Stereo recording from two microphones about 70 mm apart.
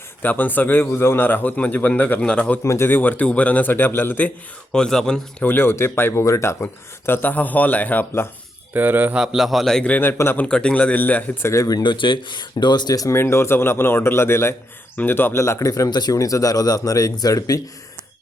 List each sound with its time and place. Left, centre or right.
0.2 s a man's voice: left
2.6 s a man's voice: left
4.7 s a man's voice: centre
5.4 s a man's voice: left
8.7 s speech: right
9.1 s a man's voice: centre
10.0 s a man's voice: left
10.4 s a man's voice: centre
10.9 s a man's voice: left
11.4 s speech: left
12.3 s speech: left
13.1 s a man's voice: left
15.9 s speech: left
16.1 s speech: left